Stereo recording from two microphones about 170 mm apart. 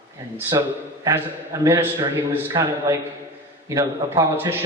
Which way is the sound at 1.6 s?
15° right (ahead or behind).